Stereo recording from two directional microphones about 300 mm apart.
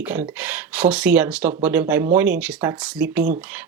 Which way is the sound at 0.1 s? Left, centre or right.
Centre.